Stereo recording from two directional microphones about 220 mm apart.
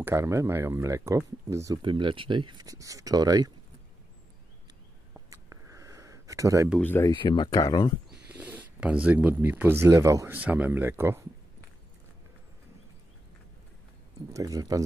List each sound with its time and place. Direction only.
0.0 s speech: 15° right (ahead or behind)
5.3 s a sound: 15° right (ahead or behind)
6.8 s speech: 10° left (ahead or behind)
7.2 s speech: 20° left (ahead or behind)
8.1 s speech: 5° right (ahead or behind)
14.3 s speech: 15° right (ahead or behind)